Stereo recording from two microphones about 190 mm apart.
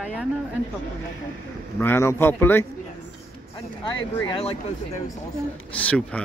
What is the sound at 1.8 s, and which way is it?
Speech, 10° left (ahead or behind).